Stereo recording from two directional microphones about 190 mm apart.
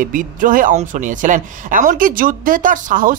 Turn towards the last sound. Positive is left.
turn(degrees=-45)  # may be behind; listen again after turning